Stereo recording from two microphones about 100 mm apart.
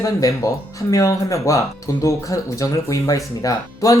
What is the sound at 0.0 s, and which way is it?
Speech, 35° left (ahead or behind).